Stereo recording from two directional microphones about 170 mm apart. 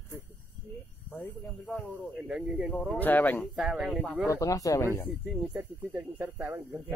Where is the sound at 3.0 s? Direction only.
10° left (ahead or behind).